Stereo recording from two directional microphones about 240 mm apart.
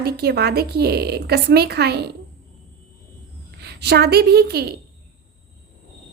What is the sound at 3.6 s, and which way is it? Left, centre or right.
A woman's voice, right.